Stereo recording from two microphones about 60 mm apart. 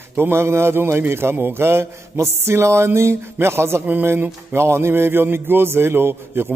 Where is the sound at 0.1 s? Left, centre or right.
Right.